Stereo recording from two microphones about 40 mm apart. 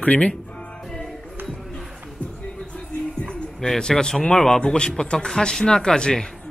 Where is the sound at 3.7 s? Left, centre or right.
Centre.